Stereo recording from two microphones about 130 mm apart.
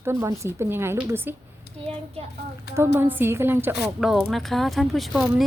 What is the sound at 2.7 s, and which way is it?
A woman's voice, 20° right (ahead or behind).